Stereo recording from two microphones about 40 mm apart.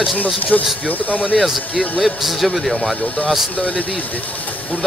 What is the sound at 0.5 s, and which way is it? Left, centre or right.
Speech, left.